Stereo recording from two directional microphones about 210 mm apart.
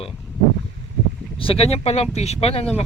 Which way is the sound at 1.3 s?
25° left (ahead or behind).